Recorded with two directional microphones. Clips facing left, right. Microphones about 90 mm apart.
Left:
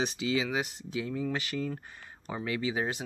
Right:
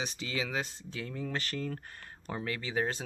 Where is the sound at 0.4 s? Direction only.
10° left (ahead or behind).